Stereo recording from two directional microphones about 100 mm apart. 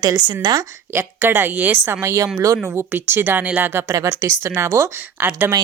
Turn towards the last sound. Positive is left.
turn(degrees=-20)  # may be behind; listen again after turning